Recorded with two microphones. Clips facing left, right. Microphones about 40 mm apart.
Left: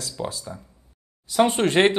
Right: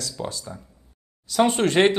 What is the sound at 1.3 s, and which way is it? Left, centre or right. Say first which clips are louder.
Speech: even; centre.